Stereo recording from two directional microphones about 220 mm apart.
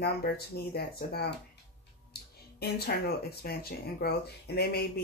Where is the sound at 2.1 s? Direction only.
45° left (ahead or behind).